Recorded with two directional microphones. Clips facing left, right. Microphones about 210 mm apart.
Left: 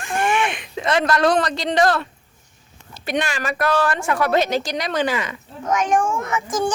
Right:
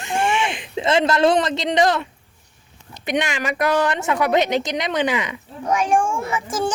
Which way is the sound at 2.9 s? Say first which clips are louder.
Right 1 dB; 20° right (ahead or behind).